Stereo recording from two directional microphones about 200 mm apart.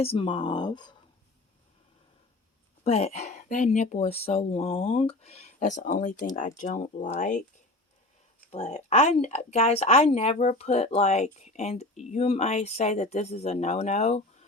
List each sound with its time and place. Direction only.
0.0 s speech: 25° left (ahead or behind)
2.8 s speech: 35° left (ahead or behind)
8.5 s speech: 35° left (ahead or behind)